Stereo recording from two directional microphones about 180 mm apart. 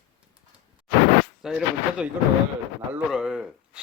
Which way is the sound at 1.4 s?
5° right (ahead or behind).